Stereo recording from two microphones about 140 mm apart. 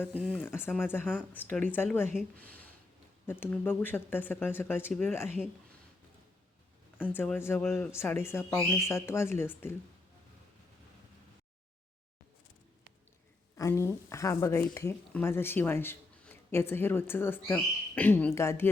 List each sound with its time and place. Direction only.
0.1 s speech: 10° right (ahead or behind)
0.3 s speech: 15° left (ahead or behind)
7.1 s speech: 15° left (ahead or behind)
13.6 s speech: 20° left (ahead or behind)